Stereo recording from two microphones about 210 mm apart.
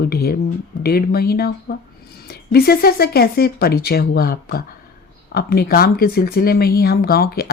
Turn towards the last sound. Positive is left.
turn(degrees=45)  # may be behind; listen again after turning